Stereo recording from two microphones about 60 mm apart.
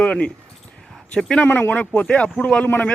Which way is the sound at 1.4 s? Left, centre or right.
Left.